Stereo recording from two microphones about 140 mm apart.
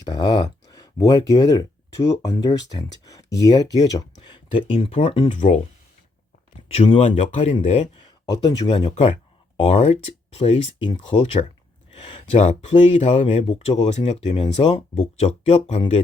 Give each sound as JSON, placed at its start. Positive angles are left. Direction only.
{"t": 0.0, "sound": "speech", "side_deg": 30}
{"t": 4.3, "sound": "speech", "side_deg": 40}
{"t": 5.3, "sound": "speech", "side_deg": 60}
{"t": 6.7, "sound": "speech", "side_deg": 45}
{"t": 7.9, "sound": "speech", "side_deg": 25}
{"t": 9.8, "sound": "speech", "side_deg": 50}
{"t": 10.8, "sound": "speech", "side_deg": 35}
{"t": 11.9, "sound": "a sound", "side_deg": 40}
{"t": 12.3, "sound": "speech", "side_deg": 50}